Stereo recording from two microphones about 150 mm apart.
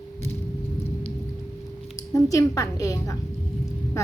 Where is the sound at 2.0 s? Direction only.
20° left (ahead or behind).